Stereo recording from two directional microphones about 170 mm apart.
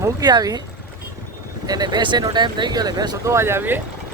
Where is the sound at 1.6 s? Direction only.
20° right (ahead or behind).